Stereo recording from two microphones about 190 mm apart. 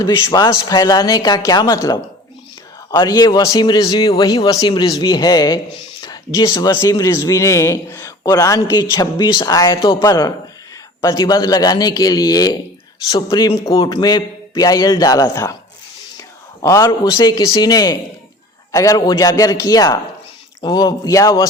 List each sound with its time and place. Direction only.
0.0 s a man's voice: 20° left (ahead or behind)
16.6 s a man's voice: 20° left (ahead or behind)